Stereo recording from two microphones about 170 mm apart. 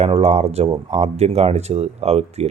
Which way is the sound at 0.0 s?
40° right (ahead or behind).